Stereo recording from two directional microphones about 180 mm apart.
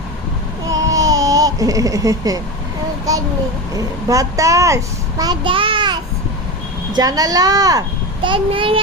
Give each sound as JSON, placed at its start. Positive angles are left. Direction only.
{"t": 0.9, "sound": "music", "side_deg": -20}
{"t": 3.1, "sound": "a sound", "side_deg": -20}
{"t": 3.8, "sound": "a child's voice", "side_deg": -20}